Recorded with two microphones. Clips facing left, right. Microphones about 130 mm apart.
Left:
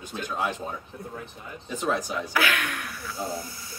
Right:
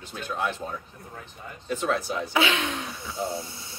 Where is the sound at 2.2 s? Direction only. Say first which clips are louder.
Right 2 dB; 25° right (ahead or behind).